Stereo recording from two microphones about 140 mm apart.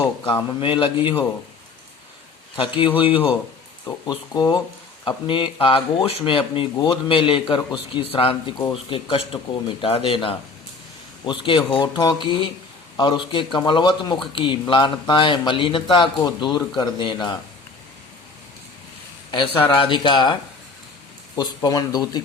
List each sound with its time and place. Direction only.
0.0 s speech: 35° left (ahead or behind)
2.6 s speech: 35° left (ahead or behind)
19.9 s speech: 35° left (ahead or behind)